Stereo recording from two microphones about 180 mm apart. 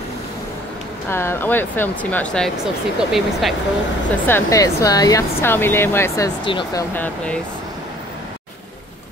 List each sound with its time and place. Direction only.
1.1 s speech: 10° left (ahead or behind)
4.3 s speech: 15° left (ahead or behind)
6.9 s speech: 10° left (ahead or behind)